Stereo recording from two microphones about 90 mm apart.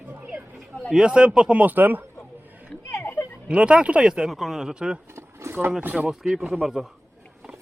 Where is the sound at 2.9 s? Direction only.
25° left (ahead or behind).